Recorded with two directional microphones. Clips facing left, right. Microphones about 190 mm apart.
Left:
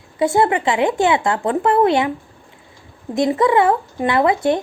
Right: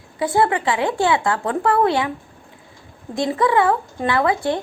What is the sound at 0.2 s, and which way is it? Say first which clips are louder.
Speech: left 3 dB; 20° left (ahead or behind).